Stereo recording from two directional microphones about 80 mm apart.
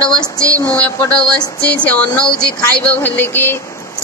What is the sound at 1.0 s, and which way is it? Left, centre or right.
A woman's voice, centre.